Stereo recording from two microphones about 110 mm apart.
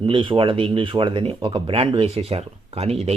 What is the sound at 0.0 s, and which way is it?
Speech, 50° right (ahead or behind).